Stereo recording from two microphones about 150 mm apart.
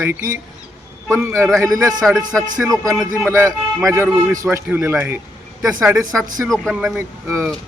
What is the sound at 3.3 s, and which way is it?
Speech, 20° right (ahead or behind).